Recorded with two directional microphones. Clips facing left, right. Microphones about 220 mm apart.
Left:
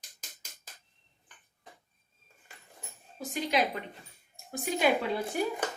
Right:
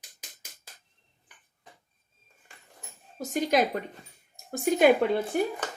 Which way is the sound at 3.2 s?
45° right (ahead or behind).